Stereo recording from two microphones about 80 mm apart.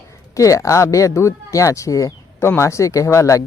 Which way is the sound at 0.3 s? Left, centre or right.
Left.